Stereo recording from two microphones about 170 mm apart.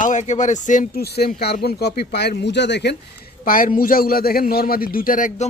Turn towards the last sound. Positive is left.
turn(degrees=50)  # may be behind; listen again after turning